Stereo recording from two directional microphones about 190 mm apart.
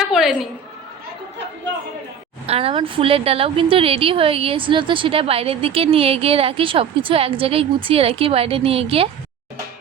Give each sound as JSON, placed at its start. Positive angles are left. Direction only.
{"t": 0.1, "sound": "a woman's voice", "side_deg": 0}
{"t": 2.5, "sound": "a woman's voice", "side_deg": -30}